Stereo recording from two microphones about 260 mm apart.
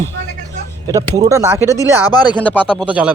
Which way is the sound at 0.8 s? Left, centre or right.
Centre.